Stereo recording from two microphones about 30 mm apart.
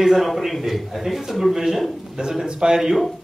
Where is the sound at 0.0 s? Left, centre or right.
Centre.